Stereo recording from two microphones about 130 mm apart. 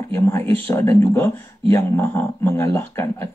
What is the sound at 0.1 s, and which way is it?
Speech, 20° left (ahead or behind).